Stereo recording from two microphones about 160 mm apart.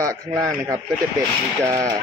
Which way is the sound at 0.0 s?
20° right (ahead or behind).